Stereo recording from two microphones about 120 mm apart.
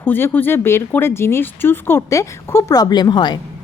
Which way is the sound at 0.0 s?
20° left (ahead or behind).